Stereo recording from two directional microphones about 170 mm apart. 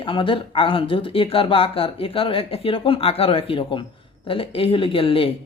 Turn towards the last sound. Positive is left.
turn(degrees=30)  # may be behind; listen again after turning